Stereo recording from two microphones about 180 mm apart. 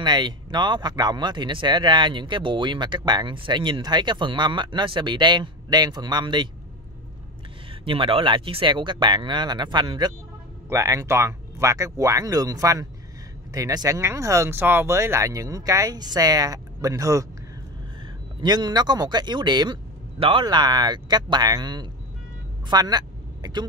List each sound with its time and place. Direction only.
0.0 s speech: 25° right (ahead or behind)
7.8 s speech: 30° right (ahead or behind)
18.4 s speech: 25° right (ahead or behind)
22.7 s vehicle: 20° right (ahead or behind)